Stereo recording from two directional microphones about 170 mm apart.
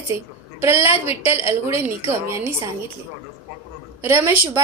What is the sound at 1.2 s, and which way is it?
A woman's voice, 15° right (ahead or behind).